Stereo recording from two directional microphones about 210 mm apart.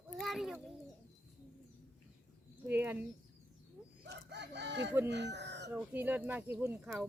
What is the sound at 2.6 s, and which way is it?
Speech, 10° right (ahead or behind).